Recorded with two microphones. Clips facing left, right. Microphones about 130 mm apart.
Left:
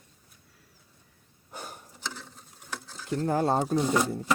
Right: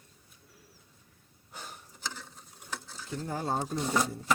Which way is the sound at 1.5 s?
45° left (ahead or behind).